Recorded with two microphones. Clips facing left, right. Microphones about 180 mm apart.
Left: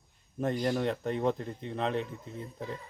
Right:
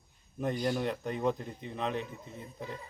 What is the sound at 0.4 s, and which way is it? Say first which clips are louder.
Speech: left 2 dB; centre (ahead or behind).